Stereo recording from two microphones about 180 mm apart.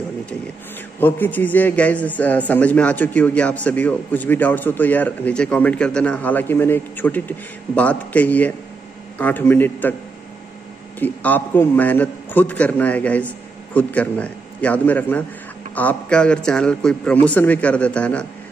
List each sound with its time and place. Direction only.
0.9 s a man's voice: 10° left (ahead or behind)
11.0 s a man's voice: 10° left (ahead or behind)